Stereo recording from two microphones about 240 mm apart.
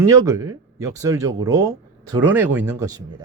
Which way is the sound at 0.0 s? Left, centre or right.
Centre.